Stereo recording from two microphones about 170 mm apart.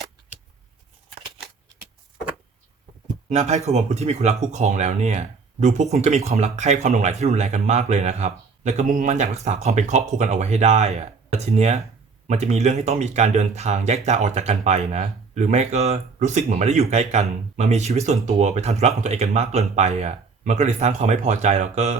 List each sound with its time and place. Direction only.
3.2 s speech: 40° right (ahead or behind)